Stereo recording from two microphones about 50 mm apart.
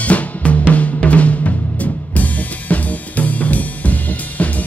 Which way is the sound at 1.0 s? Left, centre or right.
Left.